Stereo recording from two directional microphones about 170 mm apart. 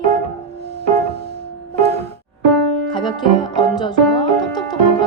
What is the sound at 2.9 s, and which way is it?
Music, 25° left (ahead or behind).